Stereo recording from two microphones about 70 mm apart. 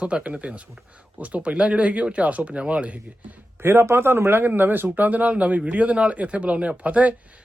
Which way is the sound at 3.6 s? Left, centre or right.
Right.